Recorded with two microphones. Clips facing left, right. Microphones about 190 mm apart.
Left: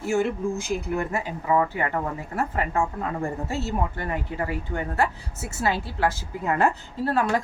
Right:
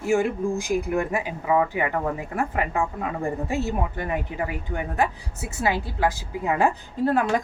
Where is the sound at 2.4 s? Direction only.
15° right (ahead or behind).